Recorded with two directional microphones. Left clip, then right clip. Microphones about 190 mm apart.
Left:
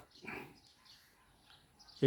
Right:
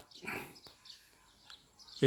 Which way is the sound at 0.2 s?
10° right (ahead or behind).